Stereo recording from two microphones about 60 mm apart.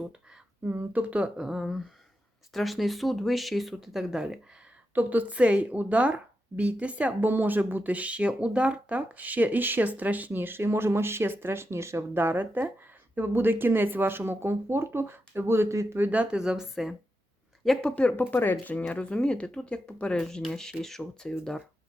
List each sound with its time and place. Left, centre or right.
0.6 s a woman's voice: right
1.4 s speech: centre
4.9 s a woman's voice: right
7.3 s speech: right
16.0 s a woman's voice: right
16.2 s speech: centre
17.8 s speech: centre
18.2 s speech: left; by 21.3 s centre